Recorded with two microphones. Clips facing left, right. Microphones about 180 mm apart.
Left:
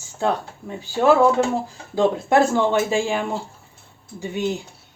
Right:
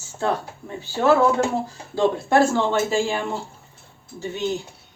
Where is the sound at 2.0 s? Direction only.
20° left (ahead or behind).